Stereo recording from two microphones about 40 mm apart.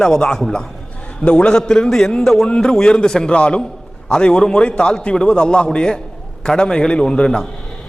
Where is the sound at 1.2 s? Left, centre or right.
Left.